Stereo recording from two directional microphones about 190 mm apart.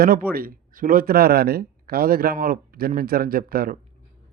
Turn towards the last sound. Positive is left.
turn(degrees=-50)  # may be behind; listen again after turning